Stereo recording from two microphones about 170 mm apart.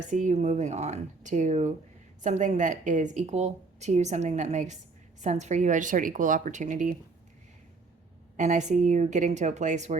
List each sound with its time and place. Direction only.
0.1 s a woman's voice: 45° right (ahead or behind)
8.4 s a woman's voice: 45° right (ahead or behind)